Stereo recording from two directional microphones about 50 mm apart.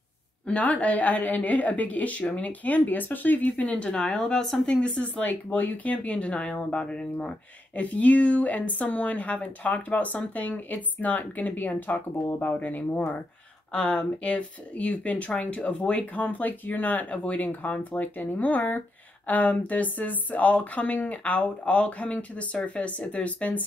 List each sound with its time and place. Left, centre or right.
0.5 s speech: left
5.2 s speech: left
13.7 s speech: left